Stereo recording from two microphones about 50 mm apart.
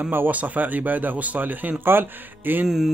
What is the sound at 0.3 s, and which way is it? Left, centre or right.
Speech, right.